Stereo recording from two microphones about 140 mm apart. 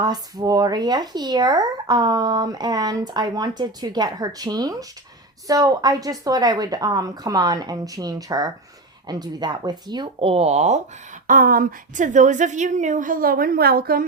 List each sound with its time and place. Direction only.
0.0 s speech: 30° right (ahead or behind); by 10.8 s 50° right (ahead or behind)
11.3 s a woman's voice: 90° right